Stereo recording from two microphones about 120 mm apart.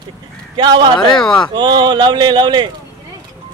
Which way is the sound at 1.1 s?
5° left (ahead or behind).